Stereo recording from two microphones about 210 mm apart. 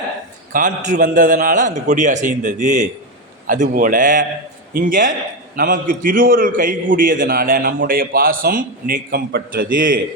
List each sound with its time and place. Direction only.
0.5 s a man's voice: 40° right (ahead or behind)